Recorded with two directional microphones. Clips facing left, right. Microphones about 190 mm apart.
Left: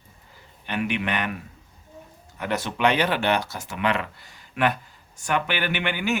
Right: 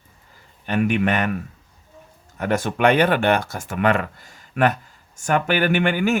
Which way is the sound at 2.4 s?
45° right (ahead or behind).